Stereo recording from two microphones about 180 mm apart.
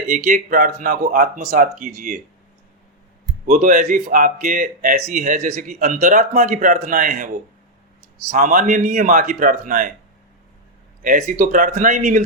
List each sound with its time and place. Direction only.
0.1 s speech: 50° right (ahead or behind)
3.4 s speech: 50° right (ahead or behind)
8.3 s speech: 50° right (ahead or behind)
11.0 s speech: 50° right (ahead or behind)